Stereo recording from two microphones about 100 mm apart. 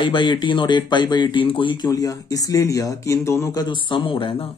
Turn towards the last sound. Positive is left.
turn(degrees=65)  # may be behind; listen again after turning